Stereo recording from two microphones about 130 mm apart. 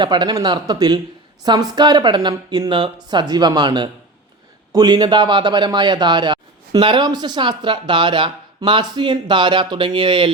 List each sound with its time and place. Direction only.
0.0 s a man's voice: 35° right (ahead or behind)